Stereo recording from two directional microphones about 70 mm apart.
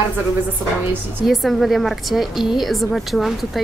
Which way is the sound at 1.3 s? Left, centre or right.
Centre.